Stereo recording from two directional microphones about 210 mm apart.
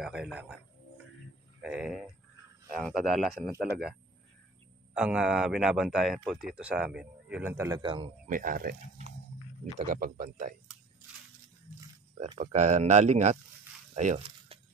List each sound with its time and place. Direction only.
0.0 s speech: 5° right (ahead or behind)
1.6 s speech: 5° right (ahead or behind)
3.4 s speech: 50° right (ahead or behind)
4.9 s speech: 5° right (ahead or behind); by 8.1 s 25° right (ahead or behind)
8.3 s speech: 40° right (ahead or behind)
12.2 s speech: 30° right (ahead or behind)
13.9 s a sound: 35° right (ahead or behind)